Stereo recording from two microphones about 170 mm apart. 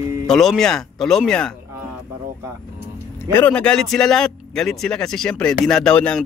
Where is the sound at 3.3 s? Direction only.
10° left (ahead or behind).